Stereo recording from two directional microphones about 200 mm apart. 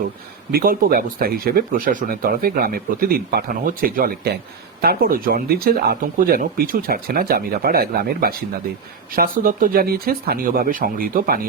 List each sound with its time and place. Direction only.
0.5 s speech: 45° right (ahead or behind)